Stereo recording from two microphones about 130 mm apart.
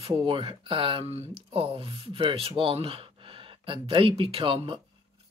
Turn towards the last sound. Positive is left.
turn(degrees=-40)  # may be behind; listen again after turning